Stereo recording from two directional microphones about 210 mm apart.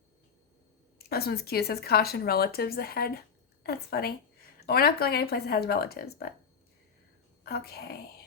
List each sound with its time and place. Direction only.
0.9 s speech: 45° left (ahead or behind)
7.4 s speech: 45° left (ahead or behind)